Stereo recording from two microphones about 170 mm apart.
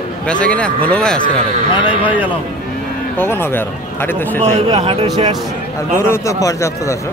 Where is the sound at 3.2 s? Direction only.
15° left (ahead or behind).